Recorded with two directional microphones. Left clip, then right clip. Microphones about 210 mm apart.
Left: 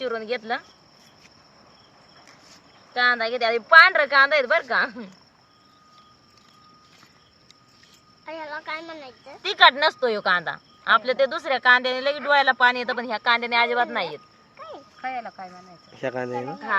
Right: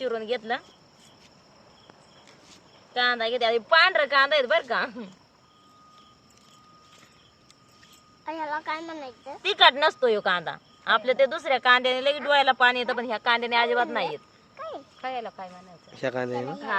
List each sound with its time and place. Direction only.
0.0 s speech: centre (ahead or behind)
2.9 s speech: centre (ahead or behind)
8.2 s speech: 55° right (ahead or behind)
9.4 s speech: 10° right (ahead or behind)
14.5 s a sound: 55° right (ahead or behind)
15.9 s speech: centre (ahead or behind)